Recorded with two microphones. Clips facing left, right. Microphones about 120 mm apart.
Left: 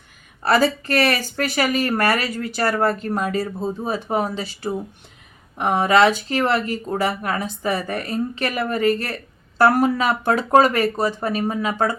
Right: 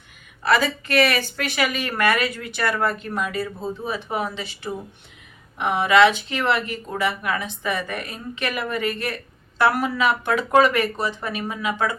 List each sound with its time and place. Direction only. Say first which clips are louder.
0.4 s speech: left 3 dB; 40° left (ahead or behind)